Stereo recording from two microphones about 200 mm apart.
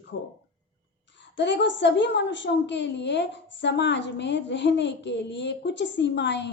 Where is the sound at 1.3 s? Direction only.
60° left (ahead or behind).